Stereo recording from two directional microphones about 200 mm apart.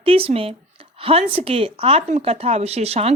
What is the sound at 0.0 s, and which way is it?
A woman's voice, 30° right (ahead or behind).